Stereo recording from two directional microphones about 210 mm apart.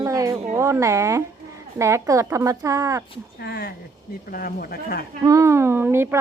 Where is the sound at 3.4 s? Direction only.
50° left (ahead or behind).